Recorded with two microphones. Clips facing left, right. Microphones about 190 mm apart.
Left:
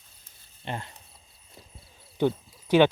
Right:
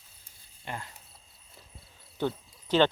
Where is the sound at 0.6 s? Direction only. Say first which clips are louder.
Left 4 dB; 25° left (ahead or behind).